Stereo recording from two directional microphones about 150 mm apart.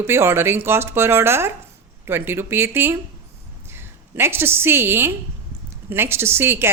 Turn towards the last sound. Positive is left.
turn(degrees=-15)  # may be behind; listen again after turning